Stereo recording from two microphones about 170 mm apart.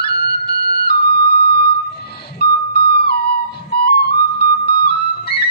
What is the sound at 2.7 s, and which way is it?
Music, 65° left (ahead or behind).